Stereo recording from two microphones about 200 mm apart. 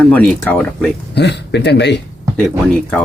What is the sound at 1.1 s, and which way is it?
Speech, 55° left (ahead or behind).